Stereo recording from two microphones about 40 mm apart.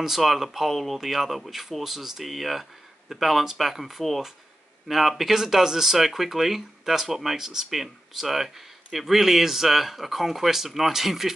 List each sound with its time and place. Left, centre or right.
0.0 s speech: centre